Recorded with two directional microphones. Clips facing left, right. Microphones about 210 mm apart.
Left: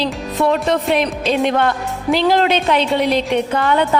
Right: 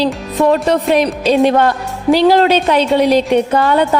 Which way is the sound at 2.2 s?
40° right (ahead or behind).